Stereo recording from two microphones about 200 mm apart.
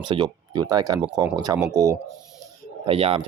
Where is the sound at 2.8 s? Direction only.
30° right (ahead or behind).